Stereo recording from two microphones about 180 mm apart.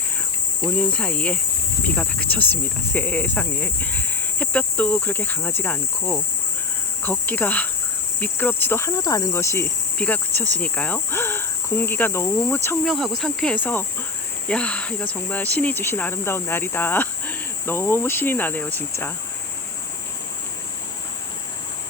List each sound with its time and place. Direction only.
0.8 s speech: 5° left (ahead or behind)
12.8 s cricket: centre (ahead or behind)
14.4 s speech: 5° left (ahead or behind)